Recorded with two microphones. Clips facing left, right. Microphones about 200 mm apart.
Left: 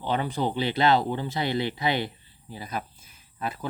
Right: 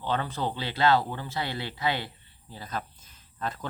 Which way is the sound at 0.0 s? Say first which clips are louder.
Left 3 dB; 15° left (ahead or behind).